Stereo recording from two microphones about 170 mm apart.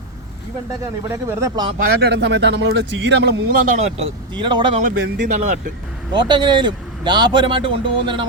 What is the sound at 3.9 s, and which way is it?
Speech, 35° right (ahead or behind).